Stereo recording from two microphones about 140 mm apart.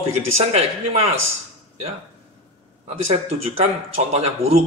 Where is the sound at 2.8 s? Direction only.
50° right (ahead or behind).